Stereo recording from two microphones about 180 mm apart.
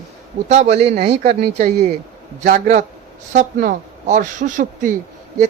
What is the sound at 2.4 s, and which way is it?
A woman's voice, 45° right (ahead or behind).